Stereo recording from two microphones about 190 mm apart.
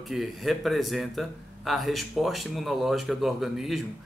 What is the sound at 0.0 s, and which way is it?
Speech, centre (ahead or behind).